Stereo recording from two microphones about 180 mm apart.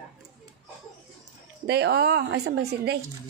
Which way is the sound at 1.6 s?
70° right (ahead or behind).